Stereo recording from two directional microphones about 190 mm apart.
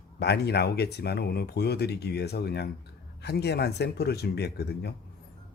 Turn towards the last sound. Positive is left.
turn(degrees=60)  # may be behind; listen again after turning